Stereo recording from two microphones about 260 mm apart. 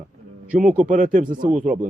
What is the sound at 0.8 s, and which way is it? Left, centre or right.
Speech, right.